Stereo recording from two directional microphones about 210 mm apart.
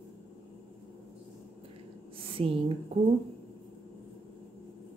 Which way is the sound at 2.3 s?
25° right (ahead or behind).